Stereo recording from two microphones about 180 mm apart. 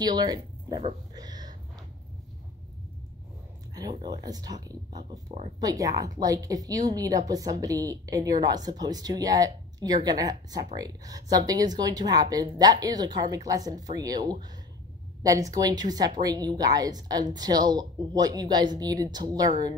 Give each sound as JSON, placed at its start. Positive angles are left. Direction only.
{"t": 0.0, "sound": "speech", "side_deg": -20}
{"t": 1.1, "sound": "a sound", "side_deg": -20}
{"t": 3.7, "sound": "a woman's voice", "side_deg": -25}